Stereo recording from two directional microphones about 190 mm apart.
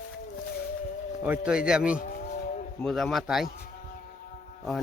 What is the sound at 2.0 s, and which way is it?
Moo, 45° left (ahead or behind).